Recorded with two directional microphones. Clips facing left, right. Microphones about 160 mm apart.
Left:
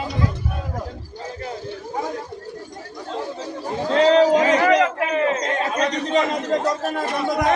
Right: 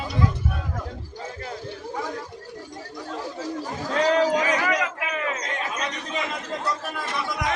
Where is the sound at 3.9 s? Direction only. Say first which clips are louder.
Left 6 dB; 30° left (ahead or behind).